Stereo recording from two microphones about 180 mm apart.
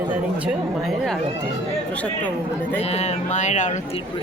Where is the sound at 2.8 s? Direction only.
40° left (ahead or behind).